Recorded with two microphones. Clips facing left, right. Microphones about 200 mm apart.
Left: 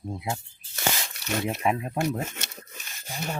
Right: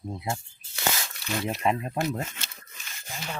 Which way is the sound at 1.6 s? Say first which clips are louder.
Even; 5° left (ahead or behind).